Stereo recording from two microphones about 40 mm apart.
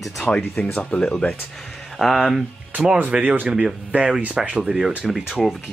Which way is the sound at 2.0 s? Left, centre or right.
Centre.